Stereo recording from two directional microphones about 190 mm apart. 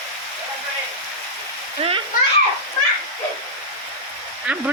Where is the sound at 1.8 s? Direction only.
30° right (ahead or behind).